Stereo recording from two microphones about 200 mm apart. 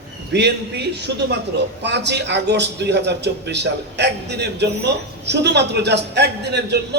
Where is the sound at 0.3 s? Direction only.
55° right (ahead or behind).